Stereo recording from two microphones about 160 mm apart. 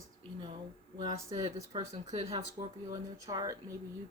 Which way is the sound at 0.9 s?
25° right (ahead or behind).